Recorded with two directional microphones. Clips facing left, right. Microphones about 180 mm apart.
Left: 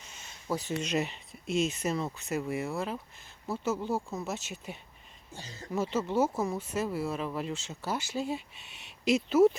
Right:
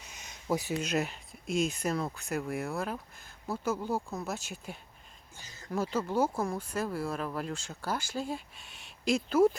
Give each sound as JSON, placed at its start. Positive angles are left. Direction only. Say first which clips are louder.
{"t": 0.1, "sound": "speech", "louder": "right 2 dB", "side_deg": -15}
{"t": 5.3, "sound": "speech", "louder": "left 9 dB", "side_deg": 35}
{"t": 5.7, "sound": "speech", "louder": "left 1 dB", "side_deg": 5}